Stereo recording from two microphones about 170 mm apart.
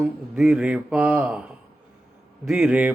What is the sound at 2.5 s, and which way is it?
Speech, 5° right (ahead or behind).